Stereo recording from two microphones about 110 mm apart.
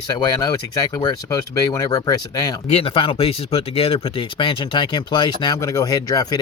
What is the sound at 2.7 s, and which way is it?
Speech, 65° left (ahead or behind).